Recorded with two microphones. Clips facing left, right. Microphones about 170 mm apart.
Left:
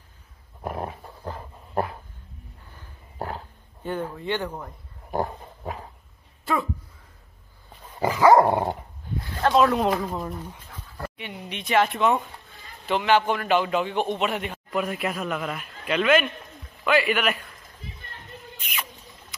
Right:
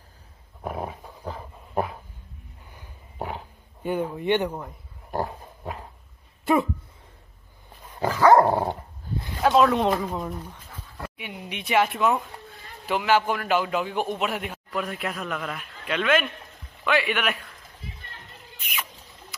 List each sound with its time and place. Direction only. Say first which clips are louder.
0.6 s dog: even; 5° right (ahead or behind)
2.7 s a sound: right 1 dB; 15° right (ahead or behind)
5.2 s dog: left 1 dB; 5° left (ahead or behind)
6.4 s a sound: right 5 dB; 20° right (ahead or behind)
7.9 s dog: even; 10° left (ahead or behind)
9.4 s a man's voice: right 1 dB; centre (ahead or behind)